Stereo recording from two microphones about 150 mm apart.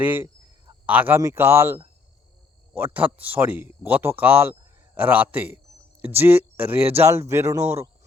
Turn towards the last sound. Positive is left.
turn(degrees=-20)  # may be behind; listen again after turning